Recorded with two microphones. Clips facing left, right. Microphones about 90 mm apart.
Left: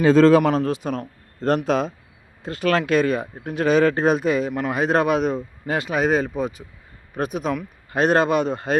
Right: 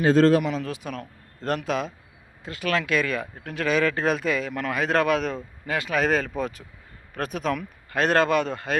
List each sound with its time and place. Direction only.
0.6 s speech: 30° left (ahead or behind)
6.0 s speech: 10° left (ahead or behind)